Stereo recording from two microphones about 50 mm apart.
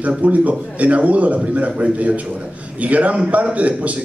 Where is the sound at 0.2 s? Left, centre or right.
Right.